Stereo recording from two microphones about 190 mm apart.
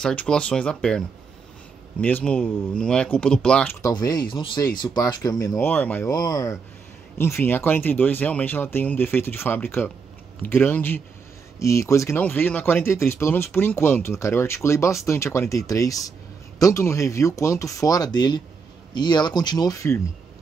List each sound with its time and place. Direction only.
0.0 s speech: 5° left (ahead or behind)
3.8 s speech: 20° left (ahead or behind)
6.1 s speech: 20° left (ahead or behind)